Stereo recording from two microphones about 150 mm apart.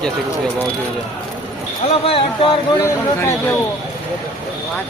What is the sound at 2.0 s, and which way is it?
Speech, 40° left (ahead or behind).